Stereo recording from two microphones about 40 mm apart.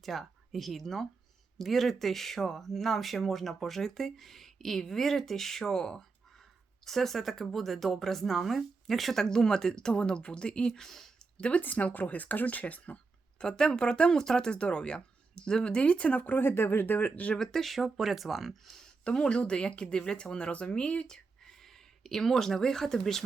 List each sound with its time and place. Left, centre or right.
0.0 s speech: centre
9.2 s speech: centre
10.7 s speech: centre
11.3 s speech: left
11.6 s speech: left
13.4 s speech: centre; by 16.4 s left
16.4 s speech: left
17.3 s speech: centre
17.6 s speech: centre
17.8 s speech: centre
19.0 s speech: left
20.3 s speech: left
21.1 s speech: centre